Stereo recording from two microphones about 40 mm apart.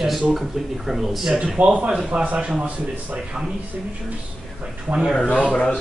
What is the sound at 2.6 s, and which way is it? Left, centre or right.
Speech, right.